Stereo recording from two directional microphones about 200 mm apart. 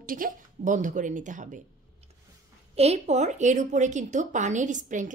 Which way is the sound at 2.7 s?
30° right (ahead or behind).